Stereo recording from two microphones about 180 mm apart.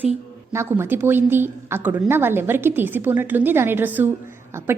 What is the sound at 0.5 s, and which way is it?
A woman's voice, 15° right (ahead or behind).